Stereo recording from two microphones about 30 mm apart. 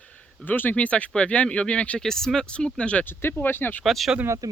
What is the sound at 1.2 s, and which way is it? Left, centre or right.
Speech, left.